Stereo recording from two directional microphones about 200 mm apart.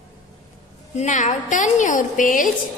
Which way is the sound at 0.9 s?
35° left (ahead or behind).